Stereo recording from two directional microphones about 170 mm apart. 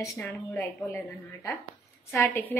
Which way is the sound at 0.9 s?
Centre (ahead or behind).